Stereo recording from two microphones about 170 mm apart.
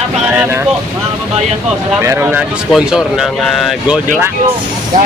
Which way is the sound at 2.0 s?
10° right (ahead or behind).